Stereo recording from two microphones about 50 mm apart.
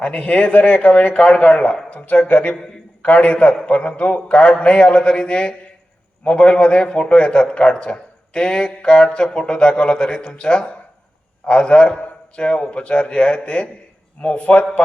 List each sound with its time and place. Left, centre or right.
0.0 s a man's voice: left